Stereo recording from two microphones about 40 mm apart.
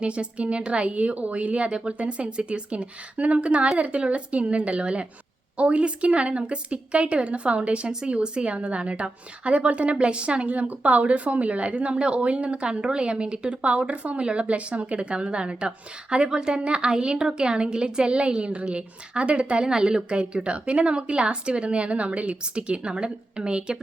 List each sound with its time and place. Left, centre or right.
0.0 s a woman's voice: right